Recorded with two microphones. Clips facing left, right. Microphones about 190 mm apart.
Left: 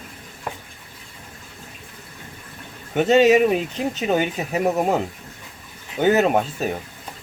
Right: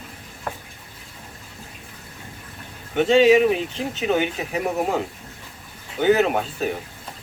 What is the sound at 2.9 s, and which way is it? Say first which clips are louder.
Speech: even; 45° left (ahead or behind).